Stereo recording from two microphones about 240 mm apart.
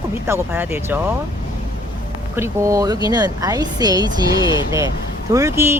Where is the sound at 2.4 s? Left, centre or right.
Centre.